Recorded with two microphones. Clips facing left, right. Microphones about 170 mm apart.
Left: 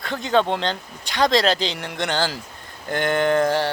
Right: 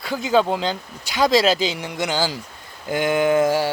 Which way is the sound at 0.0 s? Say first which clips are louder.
Right 1 dB; 5° right (ahead or behind).